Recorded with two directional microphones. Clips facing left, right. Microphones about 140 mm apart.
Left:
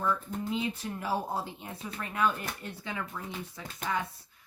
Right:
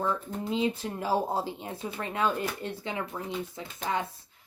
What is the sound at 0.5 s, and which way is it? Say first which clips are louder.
Speech: right 6 dB; 30° right (ahead or behind).